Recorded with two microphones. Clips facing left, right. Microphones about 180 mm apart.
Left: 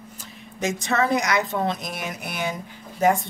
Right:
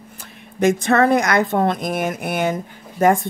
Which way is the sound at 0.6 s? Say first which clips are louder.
Right 8 dB; 55° right (ahead or behind).